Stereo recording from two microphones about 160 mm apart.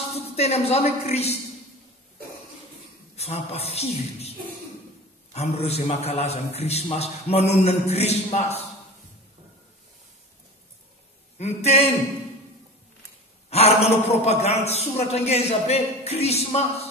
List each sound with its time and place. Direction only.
0.1 s a man's voice: 40° left (ahead or behind)
3.2 s a man's voice: 40° left (ahead or behind)
5.3 s a man's voice: 40° left (ahead or behind)
11.3 s a man's voice: 40° left (ahead or behind)
13.5 s a man's voice: 40° left (ahead or behind)